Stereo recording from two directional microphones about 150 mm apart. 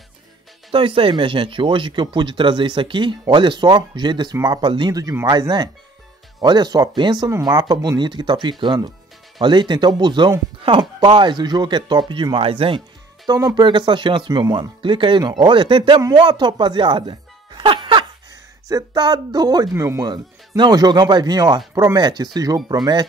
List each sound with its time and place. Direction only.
0.7 s speech: 35° right (ahead or behind)
13.3 s speech: 25° right (ahead or behind)